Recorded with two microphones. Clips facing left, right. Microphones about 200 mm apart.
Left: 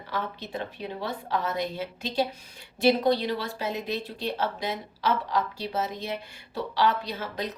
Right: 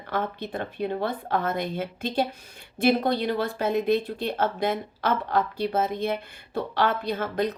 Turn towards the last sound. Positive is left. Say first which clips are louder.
# right 7 dB
turn(degrees=-55)  # may be behind; listen again after turning